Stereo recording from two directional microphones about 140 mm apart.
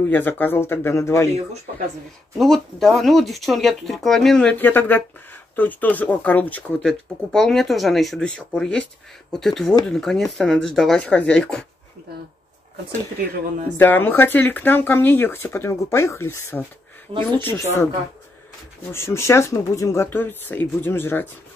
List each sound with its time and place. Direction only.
0.0 s speech: 15° left (ahead or behind)
2.3 s speech: centre (ahead or behind)
13.7 s speech: 15° left (ahead or behind)
18.9 s speech: 20° left (ahead or behind)